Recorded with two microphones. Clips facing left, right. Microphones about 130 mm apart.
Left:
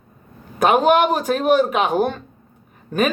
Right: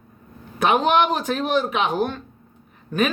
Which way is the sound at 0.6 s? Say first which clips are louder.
Left 3 dB; 45° left (ahead or behind).